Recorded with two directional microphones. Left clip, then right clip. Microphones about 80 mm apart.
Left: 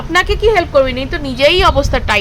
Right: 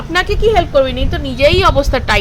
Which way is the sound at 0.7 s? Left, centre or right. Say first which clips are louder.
Left 1 dB; left.